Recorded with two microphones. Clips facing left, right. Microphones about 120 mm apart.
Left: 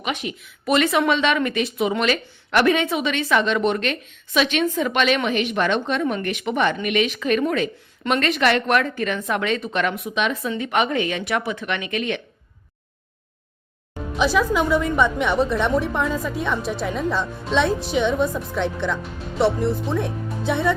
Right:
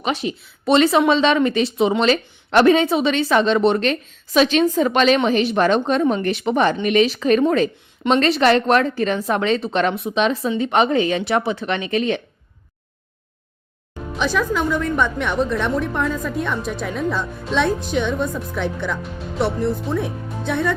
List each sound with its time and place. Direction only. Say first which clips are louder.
0.0 s speech: right 4 dB; 30° right (ahead or behind)
14.3 s a woman's voice: left 1 dB; 5° left (ahead or behind)